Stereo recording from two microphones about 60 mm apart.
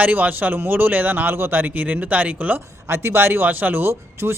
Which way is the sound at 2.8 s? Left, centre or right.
Right.